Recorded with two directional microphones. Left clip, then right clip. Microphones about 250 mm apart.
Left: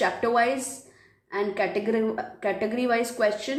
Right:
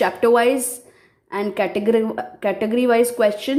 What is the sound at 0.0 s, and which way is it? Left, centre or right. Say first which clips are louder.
A woman's voice: right 7 dB; right.